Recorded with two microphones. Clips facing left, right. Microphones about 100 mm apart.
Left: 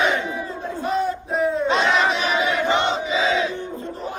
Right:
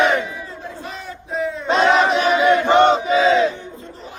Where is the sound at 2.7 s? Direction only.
55° right (ahead or behind).